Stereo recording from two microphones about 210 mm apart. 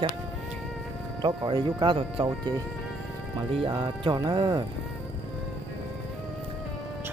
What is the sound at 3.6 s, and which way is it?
Speech, 25° right (ahead or behind).